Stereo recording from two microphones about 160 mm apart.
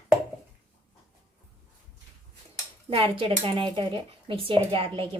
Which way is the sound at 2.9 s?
35° right (ahead or behind).